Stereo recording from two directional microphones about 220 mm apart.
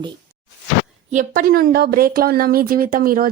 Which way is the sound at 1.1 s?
40° right (ahead or behind).